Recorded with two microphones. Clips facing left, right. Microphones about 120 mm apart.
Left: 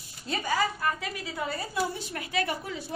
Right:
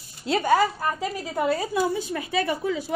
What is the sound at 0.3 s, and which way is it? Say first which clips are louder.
Speech: right 8 dB; 65° right (ahead or behind).